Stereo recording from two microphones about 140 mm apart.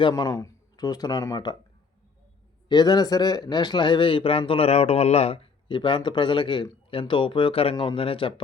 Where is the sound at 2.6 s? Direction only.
30° left (ahead or behind).